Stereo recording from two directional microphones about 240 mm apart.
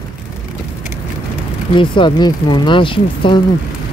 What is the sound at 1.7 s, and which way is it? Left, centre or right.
Speech, centre.